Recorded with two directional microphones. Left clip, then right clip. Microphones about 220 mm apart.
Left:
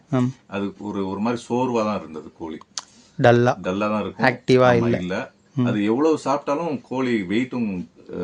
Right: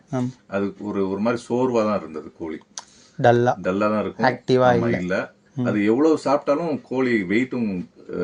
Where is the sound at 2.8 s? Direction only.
25° left (ahead or behind).